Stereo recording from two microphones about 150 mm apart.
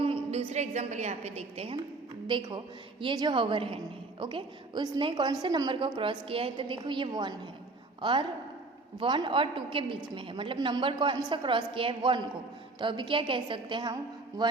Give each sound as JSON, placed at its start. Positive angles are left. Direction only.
{"t": 0.0, "sound": "a woman's voice", "side_deg": -40}